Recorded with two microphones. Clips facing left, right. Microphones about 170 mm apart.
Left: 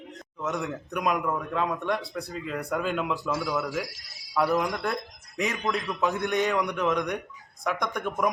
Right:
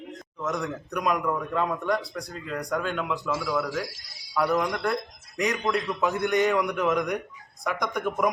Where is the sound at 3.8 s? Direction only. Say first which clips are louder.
Right 3 dB; 25° right (ahead or behind).